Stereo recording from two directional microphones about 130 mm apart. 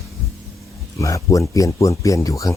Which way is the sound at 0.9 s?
25° left (ahead or behind).